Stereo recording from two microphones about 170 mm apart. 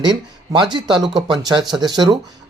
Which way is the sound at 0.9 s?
Centre (ahead or behind).